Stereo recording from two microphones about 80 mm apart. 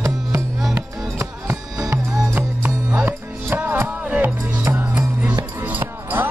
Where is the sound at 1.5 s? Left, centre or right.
Right.